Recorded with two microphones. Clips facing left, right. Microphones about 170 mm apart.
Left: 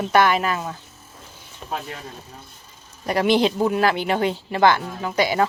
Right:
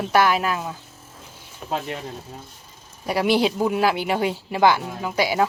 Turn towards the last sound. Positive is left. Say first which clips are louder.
# left 1 dB
turn(degrees=-5)  # may be behind; listen again after turning